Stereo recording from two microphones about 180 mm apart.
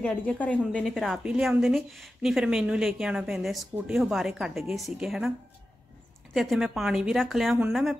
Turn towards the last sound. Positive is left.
turn(degrees=0)  # may be behind; listen again after turning